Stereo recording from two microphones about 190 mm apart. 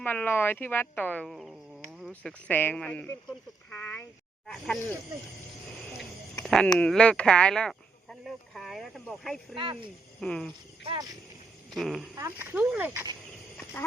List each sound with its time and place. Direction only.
0.0 s speech: 10° left (ahead or behind)
2.0 s a sound: centre (ahead or behind)
2.5 s speech: 10° left (ahead or behind)
3.2 s a sound: 10° left (ahead or behind)
4.4 s speech: centre (ahead or behind)
6.4 s a sound: centre (ahead or behind)
6.7 s speech: 5° left (ahead or behind)
8.2 s a sound: centre (ahead or behind)
9.6 s speech: 30° right (ahead or behind)
10.2 s speech: 5° left (ahead or behind)
10.8 s speech: 20° right (ahead or behind)
11.7 s speech: centre (ahead or behind)
12.1 s speech: 15° right (ahead or behind)